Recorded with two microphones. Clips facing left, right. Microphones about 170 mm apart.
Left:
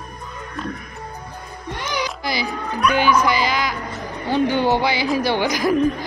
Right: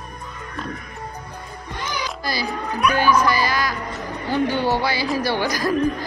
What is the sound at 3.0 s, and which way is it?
Speech, 20° left (ahead or behind).